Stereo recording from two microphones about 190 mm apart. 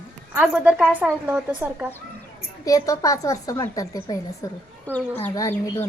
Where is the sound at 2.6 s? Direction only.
20° left (ahead or behind).